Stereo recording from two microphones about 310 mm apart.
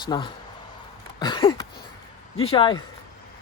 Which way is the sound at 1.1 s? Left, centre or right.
Centre.